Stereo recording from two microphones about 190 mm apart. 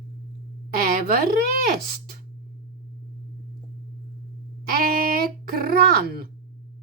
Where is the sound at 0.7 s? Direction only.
50° right (ahead or behind).